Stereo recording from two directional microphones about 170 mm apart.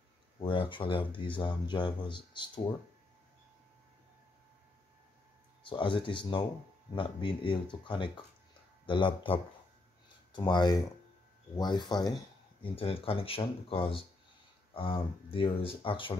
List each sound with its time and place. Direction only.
0.4 s speech: 30° left (ahead or behind)
5.6 s speech: 30° left (ahead or behind)